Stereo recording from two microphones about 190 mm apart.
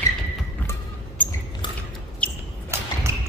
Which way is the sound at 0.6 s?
10° left (ahead or behind).